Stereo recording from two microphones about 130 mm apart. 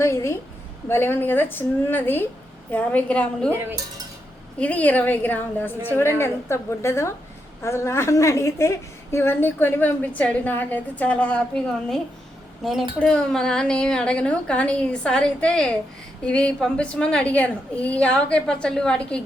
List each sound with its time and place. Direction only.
0.0 s a woman's voice: 20° left (ahead or behind)
4.6 s a woman's voice: 10° left (ahead or behind)
13.0 s a woman's voice: 5° left (ahead or behind)